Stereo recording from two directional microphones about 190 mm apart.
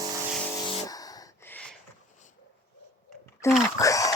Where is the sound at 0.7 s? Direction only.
20° left (ahead or behind).